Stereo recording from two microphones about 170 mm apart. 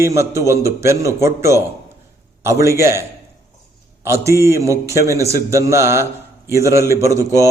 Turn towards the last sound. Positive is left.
turn(degrees=-20)  # may be behind; listen again after turning